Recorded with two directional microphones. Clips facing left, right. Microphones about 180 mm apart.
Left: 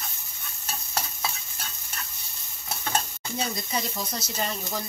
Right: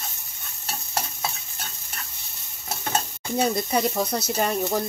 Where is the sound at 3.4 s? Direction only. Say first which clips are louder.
Right 8 dB; 60° right (ahead or behind).